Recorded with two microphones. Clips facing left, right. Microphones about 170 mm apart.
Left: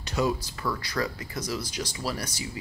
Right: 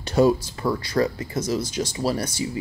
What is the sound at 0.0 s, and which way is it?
Speech, 30° right (ahead or behind).